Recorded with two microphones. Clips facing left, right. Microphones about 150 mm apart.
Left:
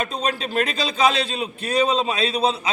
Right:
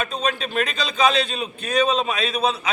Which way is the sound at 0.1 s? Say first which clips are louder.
Even; 35° left (ahead or behind).